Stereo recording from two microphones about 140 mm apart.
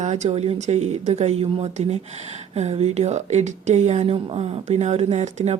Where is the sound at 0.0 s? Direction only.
55° right (ahead or behind).